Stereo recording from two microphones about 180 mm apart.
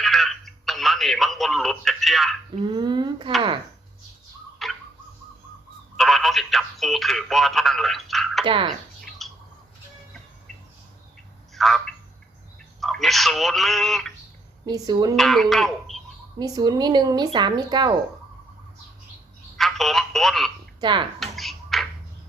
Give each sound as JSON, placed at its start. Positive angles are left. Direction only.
{"t": 0.0, "sound": "telephone", "side_deg": 0}
{"t": 2.6, "sound": "speech", "side_deg": -25}
{"t": 4.6, "sound": "tick-tock", "side_deg": 0}
{"t": 6.0, "sound": "telephone", "side_deg": 0}
{"t": 8.4, "sound": "speech", "side_deg": -30}
{"t": 9.0, "sound": "bird", "side_deg": 0}
{"t": 11.5, "sound": "telephone", "side_deg": 0}
{"t": 12.8, "sound": "speech", "side_deg": 0}
{"t": 14.7, "sound": "speech", "side_deg": -20}
{"t": 15.1, "sound": "speech", "side_deg": 0}
{"t": 16.4, "sound": "speech", "side_deg": -20}
{"t": 19.5, "sound": "telephone", "side_deg": 0}
{"t": 20.8, "sound": "speech", "side_deg": -25}
{"t": 21.2, "sound": "a sound", "side_deg": 0}